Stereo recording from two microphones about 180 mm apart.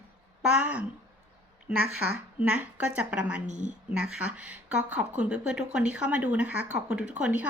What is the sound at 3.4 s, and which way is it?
Speech, 40° right (ahead or behind).